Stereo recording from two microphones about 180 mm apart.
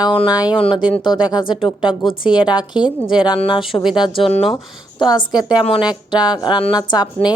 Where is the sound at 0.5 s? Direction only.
30° left (ahead or behind).